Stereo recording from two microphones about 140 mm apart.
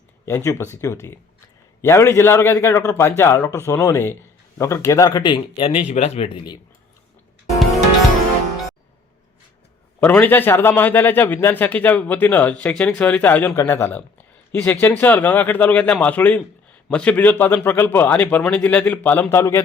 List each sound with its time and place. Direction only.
0.3 s a man's voice: 20° left (ahead or behind)
5.6 s speech: 50° left (ahead or behind)
10.0 s speech: 10° left (ahead or behind)